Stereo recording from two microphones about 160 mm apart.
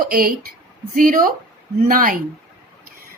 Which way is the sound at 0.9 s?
60° right (ahead or behind).